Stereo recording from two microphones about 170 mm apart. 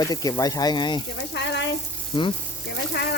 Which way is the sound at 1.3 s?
90° left.